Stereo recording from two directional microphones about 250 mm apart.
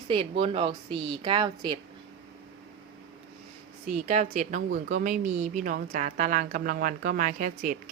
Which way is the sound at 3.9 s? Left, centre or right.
Right.